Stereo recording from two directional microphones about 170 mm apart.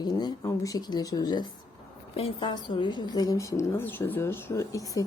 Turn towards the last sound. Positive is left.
turn(degrees=20)  # may be behind; listen again after turning